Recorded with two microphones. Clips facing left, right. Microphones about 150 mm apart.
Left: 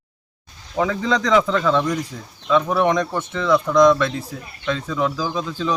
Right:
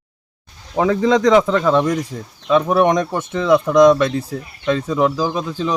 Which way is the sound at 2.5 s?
50° right (ahead or behind).